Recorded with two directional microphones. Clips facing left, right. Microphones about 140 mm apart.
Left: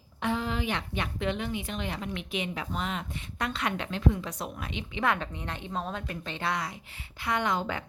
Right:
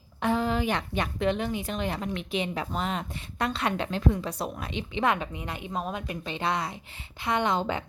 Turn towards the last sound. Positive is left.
turn(degrees=-25)  # may be behind; listen again after turning